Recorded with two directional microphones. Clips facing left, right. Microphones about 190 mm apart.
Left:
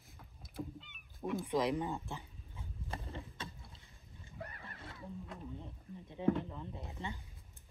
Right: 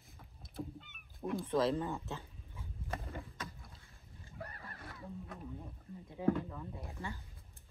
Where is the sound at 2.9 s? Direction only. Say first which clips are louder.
Right 2 dB; 30° left (ahead or behind).